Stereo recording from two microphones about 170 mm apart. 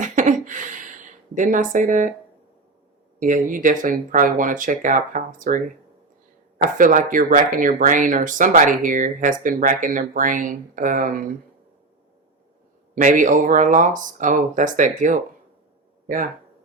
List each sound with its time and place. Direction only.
0.0 s a sound: 50° right (ahead or behind)
3.2 s speech: 50° right (ahead or behind)
6.7 s speech: 50° right (ahead or behind)
12.9 s speech: 50° right (ahead or behind)